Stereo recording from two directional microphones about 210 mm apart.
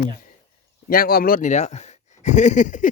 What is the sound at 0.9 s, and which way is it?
Speech, 45° left (ahead or behind).